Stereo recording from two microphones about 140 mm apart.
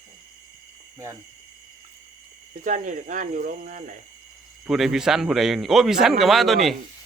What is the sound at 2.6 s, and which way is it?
Speech, 65° right (ahead or behind).